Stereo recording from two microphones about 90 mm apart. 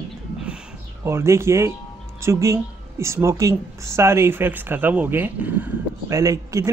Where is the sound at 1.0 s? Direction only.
30° right (ahead or behind).